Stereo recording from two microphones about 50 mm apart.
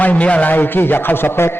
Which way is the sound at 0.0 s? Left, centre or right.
Left.